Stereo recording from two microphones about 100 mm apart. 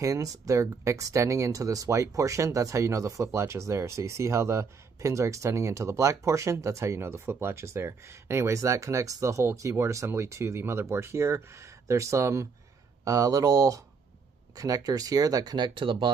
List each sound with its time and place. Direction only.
0.0 s speech: 35° right (ahead or behind); by 16.1 s 55° right (ahead or behind)